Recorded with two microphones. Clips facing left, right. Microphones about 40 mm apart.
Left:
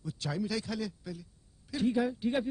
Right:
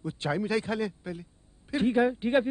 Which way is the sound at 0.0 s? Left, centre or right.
Right.